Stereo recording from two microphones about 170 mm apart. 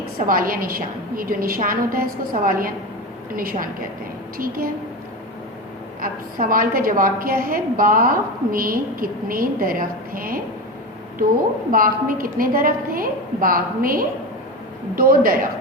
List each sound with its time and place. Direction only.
0.3 s a woman's voice: 55° right (ahead or behind)
6.0 s a woman's voice: 55° right (ahead or behind)
11.7 s a woman's voice: 55° right (ahead or behind)